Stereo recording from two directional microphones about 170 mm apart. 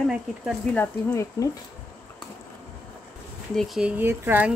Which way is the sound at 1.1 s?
20° left (ahead or behind).